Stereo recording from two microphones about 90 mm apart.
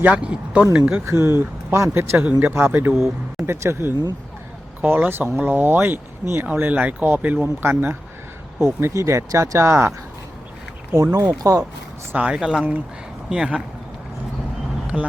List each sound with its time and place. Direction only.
0.0 s speech: 10° right (ahead or behind)
1.0 s speech: 30° right (ahead or behind)
10.9 s speech: 35° right (ahead or behind)
12.1 s speech: 10° right (ahead or behind)
14.9 s speech: 15° right (ahead or behind)